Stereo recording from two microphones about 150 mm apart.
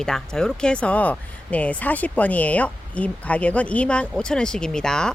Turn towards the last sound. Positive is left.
turn(degrees=5)  # may be behind; listen again after turning